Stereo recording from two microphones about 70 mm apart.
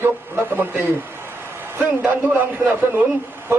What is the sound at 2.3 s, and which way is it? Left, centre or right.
Speech, right.